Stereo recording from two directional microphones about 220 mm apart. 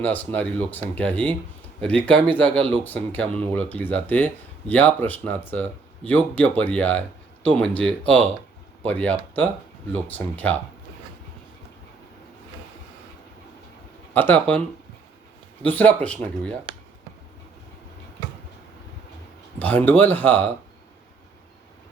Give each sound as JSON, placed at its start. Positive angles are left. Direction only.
{"t": 0.0, "sound": "speech", "side_deg": 5}
{"t": 14.1, "sound": "speech", "side_deg": 10}
{"t": 15.6, "sound": "speech", "side_deg": 5}
{"t": 19.5, "sound": "speech", "side_deg": 5}